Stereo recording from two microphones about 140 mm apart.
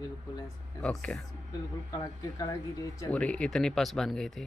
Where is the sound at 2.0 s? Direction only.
25° left (ahead or behind).